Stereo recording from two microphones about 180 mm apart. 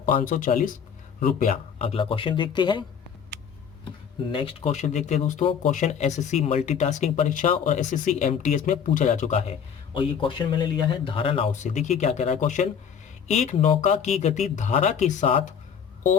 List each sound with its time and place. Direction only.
0.0 s speech: 50° left (ahead or behind)
1.8 s speech: 30° left (ahead or behind)
4.3 s speech: 30° left (ahead or behind)